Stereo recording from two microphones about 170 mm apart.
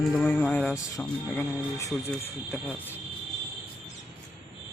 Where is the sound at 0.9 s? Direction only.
15° left (ahead or behind).